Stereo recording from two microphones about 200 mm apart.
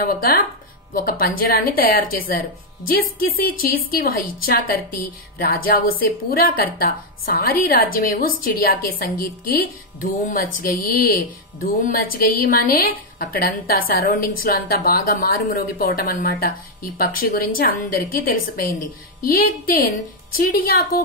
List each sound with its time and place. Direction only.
0.0 s a woman's voice: 45° left (ahead or behind)